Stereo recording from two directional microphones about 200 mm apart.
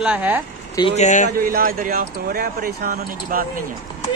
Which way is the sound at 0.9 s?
35° left (ahead or behind).